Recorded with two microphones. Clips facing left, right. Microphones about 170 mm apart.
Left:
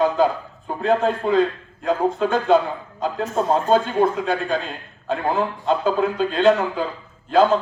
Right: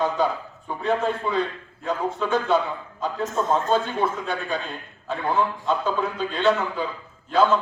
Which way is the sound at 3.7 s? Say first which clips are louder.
Left 5 dB; 50° left (ahead or behind).